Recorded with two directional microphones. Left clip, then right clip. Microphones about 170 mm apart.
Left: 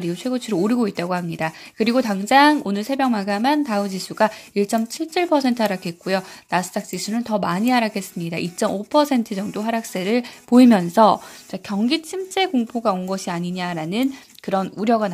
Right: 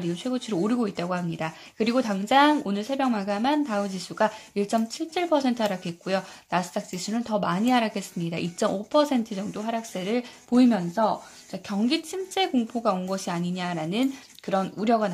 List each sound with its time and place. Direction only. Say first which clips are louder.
0.0 s speech: left 5 dB; 25° left (ahead or behind)
10.5 s speech: left 8 dB; 40° left (ahead or behind)